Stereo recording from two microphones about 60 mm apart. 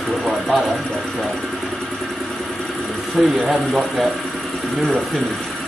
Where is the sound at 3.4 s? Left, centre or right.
Centre.